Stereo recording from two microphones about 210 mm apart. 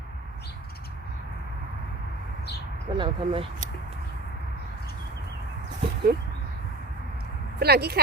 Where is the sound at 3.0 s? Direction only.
25° right (ahead or behind).